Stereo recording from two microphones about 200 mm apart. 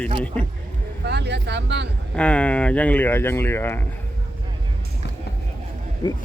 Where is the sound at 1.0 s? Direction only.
60° right (ahead or behind).